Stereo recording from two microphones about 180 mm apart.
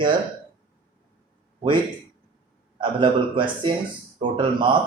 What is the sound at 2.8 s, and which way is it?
A man's voice, 25° right (ahead or behind).